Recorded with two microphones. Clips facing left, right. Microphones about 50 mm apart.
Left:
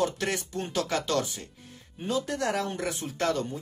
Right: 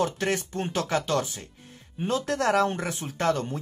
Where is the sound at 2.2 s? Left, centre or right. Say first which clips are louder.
Right 6 dB; right.